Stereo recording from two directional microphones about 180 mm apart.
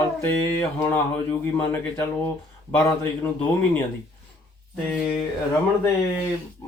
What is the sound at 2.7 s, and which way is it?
Speech, 15° left (ahead or behind).